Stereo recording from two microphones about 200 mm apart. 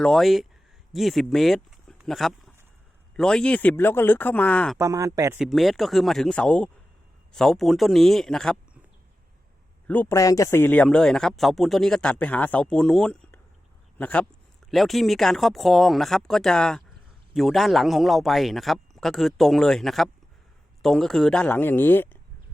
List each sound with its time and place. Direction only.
0.0 s a man's voice: centre (ahead or behind)
4.8 s speech: 15° right (ahead or behind)
5.4 s a man's voice: centre (ahead or behind)
9.8 s a man's voice: 10° left (ahead or behind)